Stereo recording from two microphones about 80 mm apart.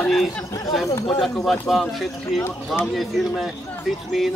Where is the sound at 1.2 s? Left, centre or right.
Centre.